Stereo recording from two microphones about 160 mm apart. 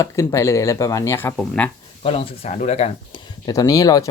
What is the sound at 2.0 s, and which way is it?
Speech, 35° left (ahead or behind).